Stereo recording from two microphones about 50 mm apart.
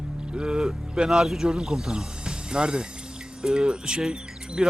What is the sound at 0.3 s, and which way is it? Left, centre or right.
Speech, centre.